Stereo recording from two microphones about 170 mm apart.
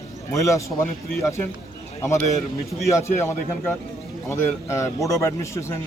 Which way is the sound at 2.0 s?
20° left (ahead or behind).